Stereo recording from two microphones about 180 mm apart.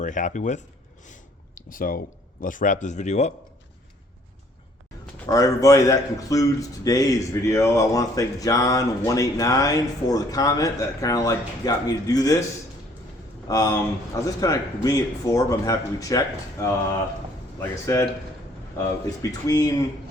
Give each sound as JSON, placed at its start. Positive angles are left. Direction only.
{"t": 0.0, "sound": "speech", "side_deg": 45}
{"t": 1.7, "sound": "speech", "side_deg": 50}
{"t": 5.2, "sound": "a man's voice", "side_deg": 20}
{"t": 13.5, "sound": "a man's voice", "side_deg": 20}
{"t": 19.2, "sound": "a man's voice", "side_deg": 20}